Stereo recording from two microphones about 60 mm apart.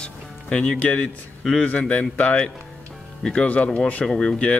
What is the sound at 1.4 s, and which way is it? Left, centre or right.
Speech, centre.